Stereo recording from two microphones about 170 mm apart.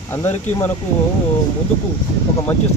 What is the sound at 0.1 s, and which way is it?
Speech, 15° left (ahead or behind).